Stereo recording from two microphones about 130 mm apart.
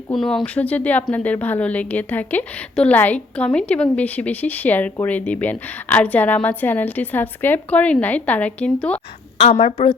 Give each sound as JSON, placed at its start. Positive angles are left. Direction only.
{"t": 0.1, "sound": "a woman's voice", "side_deg": 0}
{"t": 9.4, "sound": "a woman's voice", "side_deg": 55}